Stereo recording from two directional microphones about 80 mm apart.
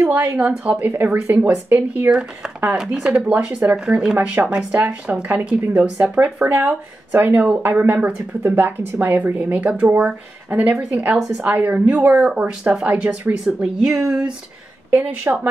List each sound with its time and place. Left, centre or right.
0.0 s speech: right
2.0 s speech: centre